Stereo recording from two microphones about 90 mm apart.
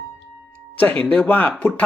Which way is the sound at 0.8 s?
20° left (ahead or behind).